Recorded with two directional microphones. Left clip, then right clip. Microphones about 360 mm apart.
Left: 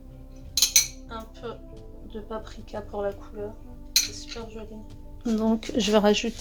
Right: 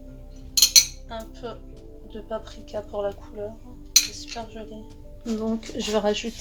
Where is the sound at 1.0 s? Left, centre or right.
Centre.